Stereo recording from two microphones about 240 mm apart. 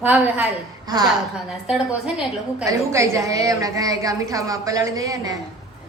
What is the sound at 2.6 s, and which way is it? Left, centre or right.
A woman's voice, centre.